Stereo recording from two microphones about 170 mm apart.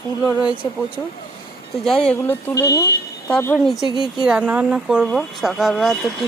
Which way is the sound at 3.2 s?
5° left (ahead or behind).